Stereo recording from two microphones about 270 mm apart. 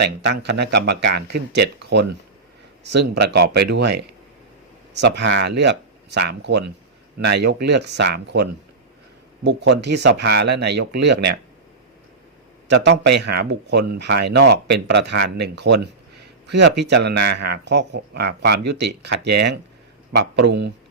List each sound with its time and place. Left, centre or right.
0.0 s speech: right
12.6 s speech: right